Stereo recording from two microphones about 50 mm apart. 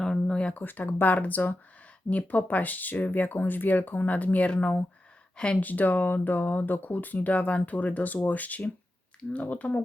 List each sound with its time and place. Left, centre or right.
0.0 s a sound: centre
0.6 s speech: left
5.5 s speech: left